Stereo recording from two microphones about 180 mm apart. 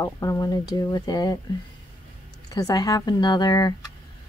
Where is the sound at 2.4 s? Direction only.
20° left (ahead or behind).